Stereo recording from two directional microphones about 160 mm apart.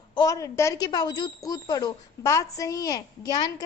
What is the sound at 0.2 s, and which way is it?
A woman's voice, 20° left (ahead or behind).